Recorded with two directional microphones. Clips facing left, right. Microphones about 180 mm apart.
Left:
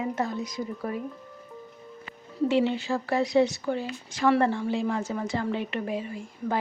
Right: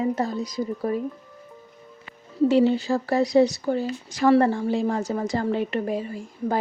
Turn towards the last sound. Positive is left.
turn(degrees=-40)  # may be behind; listen again after turning